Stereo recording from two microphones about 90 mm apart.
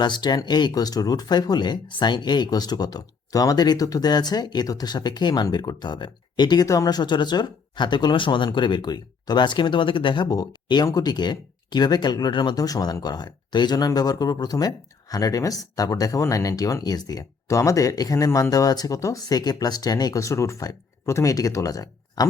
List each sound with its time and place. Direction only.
0.0 s speech: 50° left (ahead or behind)
10.2 s speech: 45° left (ahead or behind)